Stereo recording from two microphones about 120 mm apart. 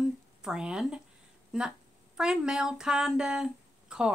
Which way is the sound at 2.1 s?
5° right (ahead or behind).